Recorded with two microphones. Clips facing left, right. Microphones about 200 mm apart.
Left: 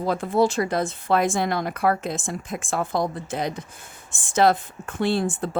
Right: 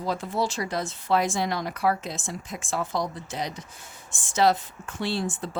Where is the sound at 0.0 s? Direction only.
55° left (ahead or behind).